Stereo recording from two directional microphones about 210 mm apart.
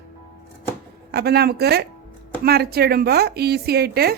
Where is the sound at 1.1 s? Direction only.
50° right (ahead or behind).